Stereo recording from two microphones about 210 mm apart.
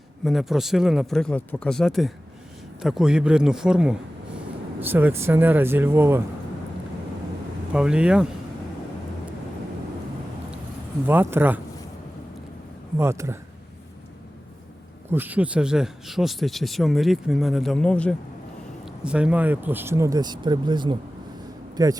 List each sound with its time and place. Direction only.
0.3 s speech: centre (ahead or behind)
7.7 s speech: 5° right (ahead or behind)
11.0 s speech: 10° right (ahead or behind)
13.0 s speech: 10° right (ahead or behind)
15.1 s speech: 10° right (ahead or behind)